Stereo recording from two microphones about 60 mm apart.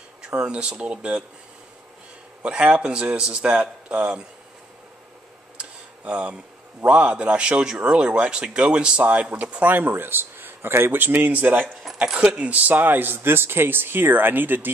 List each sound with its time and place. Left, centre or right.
0.3 s speech: centre
2.4 s speech: right
5.6 s tick-tock: centre
6.9 s speech: right
12.0 s a man's voice: centre; by 14.7 s right